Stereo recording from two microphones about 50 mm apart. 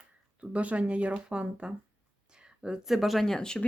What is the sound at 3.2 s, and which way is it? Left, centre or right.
Speech, centre.